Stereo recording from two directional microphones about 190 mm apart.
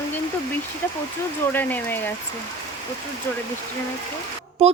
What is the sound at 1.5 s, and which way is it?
Speech, 10° left (ahead or behind).